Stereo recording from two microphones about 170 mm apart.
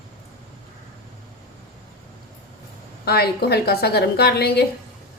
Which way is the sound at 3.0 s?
70° left (ahead or behind).